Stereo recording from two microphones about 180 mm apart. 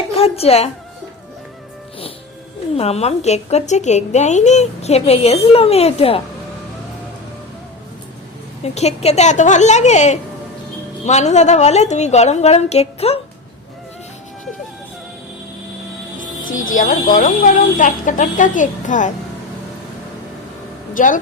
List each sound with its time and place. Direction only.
0.1 s a sound: 35° left (ahead or behind)
2.7 s a woman's voice: 35° left (ahead or behind)
8.6 s a woman's voice: 35° left (ahead or behind)
16.4 s speech: 50° left (ahead or behind)
20.9 s speech: 45° left (ahead or behind)